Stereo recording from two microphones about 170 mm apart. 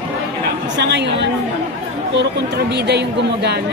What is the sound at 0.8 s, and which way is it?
Speech, 90° right.